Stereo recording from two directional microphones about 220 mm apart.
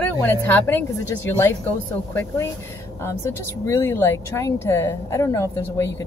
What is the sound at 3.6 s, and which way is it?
Speech, 10° left (ahead or behind).